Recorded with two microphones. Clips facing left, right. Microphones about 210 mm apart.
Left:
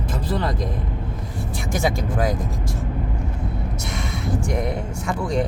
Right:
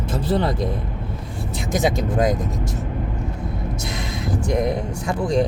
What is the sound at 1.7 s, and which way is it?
Speech, 20° right (ahead or behind).